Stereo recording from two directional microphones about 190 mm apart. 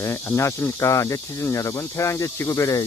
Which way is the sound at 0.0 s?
15° left (ahead or behind).